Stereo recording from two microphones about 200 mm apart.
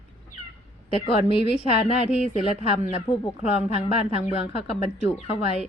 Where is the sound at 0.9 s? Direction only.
25° left (ahead or behind).